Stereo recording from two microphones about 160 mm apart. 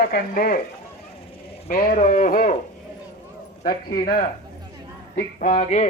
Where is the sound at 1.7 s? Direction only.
60° left (ahead or behind).